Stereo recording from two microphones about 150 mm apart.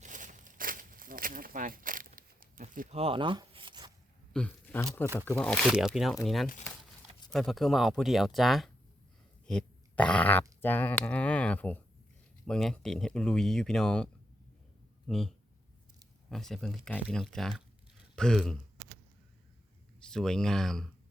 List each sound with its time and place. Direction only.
0.0 s a sound: 55° right (ahead or behind)
2.9 s zipper: 40° right (ahead or behind)
4.3 s speech: 5° left (ahead or behind)
5.6 s speech: 5° right (ahead or behind)
9.5 s grunt: 5° left (ahead or behind)
10.6 s speech: 10° left (ahead or behind)
16.3 s speech: centre (ahead or behind)
20.1 s speech: 5° left (ahead or behind)